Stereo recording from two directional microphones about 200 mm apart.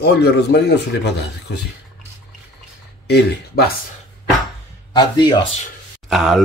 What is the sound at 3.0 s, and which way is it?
Speech, 55° left (ahead or behind).